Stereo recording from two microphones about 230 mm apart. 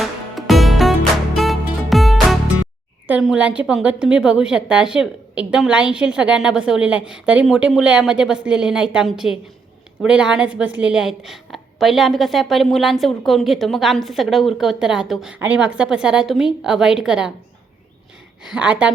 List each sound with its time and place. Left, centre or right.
0.0 s music: centre
3.1 s a woman's voice: centre
18.4 s a woman's voice: centre